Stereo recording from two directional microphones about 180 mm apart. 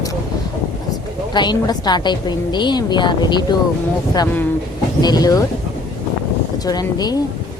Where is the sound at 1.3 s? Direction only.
25° left (ahead or behind).